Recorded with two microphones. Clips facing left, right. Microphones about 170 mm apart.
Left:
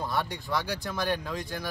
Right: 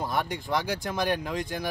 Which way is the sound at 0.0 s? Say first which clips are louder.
Right 2 dB; 15° right (ahead or behind).